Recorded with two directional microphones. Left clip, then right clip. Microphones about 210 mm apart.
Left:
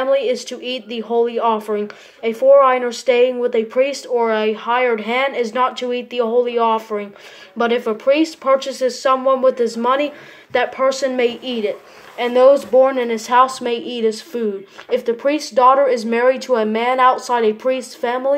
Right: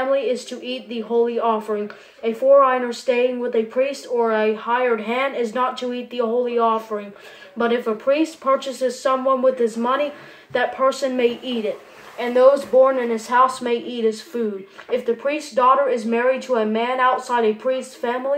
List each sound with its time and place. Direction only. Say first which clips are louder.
0.1 s speech: left 3 dB; 45° left (ahead or behind)